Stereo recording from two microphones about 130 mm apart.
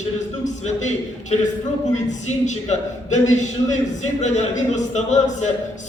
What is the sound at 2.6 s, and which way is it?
A man's voice, 65° left (ahead or behind).